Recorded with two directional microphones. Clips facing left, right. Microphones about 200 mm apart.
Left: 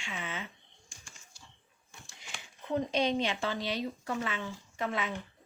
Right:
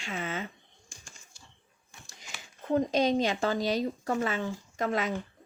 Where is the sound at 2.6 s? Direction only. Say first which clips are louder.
Right 4 dB; 45° right (ahead or behind).